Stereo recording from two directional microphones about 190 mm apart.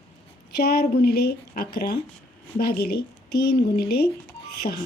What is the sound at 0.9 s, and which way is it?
Speech, 55° left (ahead or behind).